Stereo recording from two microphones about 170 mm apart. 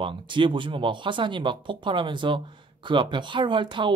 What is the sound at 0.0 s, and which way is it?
Speech, 30° right (ahead or behind).